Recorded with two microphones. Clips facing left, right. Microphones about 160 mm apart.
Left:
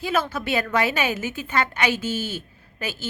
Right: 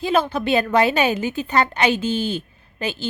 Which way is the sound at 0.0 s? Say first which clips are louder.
Right 5 dB; 30° right (ahead or behind).